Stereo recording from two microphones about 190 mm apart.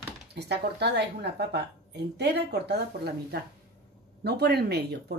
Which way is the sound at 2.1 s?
60° right (ahead or behind).